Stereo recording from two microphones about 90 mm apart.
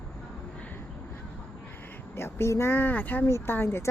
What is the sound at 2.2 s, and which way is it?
Speech, 25° left (ahead or behind).